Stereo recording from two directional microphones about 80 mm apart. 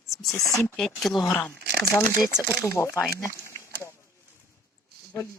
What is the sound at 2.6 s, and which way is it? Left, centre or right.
Speech, left.